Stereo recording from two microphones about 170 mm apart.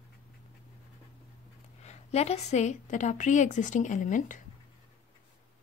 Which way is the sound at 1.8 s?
40° left (ahead or behind).